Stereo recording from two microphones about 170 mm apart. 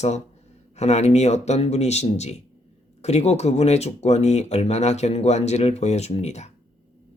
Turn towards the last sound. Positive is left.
turn(degrees=40)  # may be behind; listen again after turning